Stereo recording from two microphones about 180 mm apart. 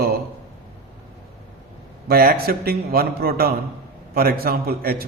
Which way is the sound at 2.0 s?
55° right (ahead or behind).